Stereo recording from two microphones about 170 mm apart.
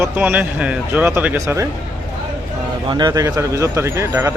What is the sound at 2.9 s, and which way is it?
Speech, 25° right (ahead or behind).